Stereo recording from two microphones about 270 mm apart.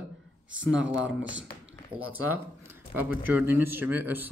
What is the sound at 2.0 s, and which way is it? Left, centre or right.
Speech, right.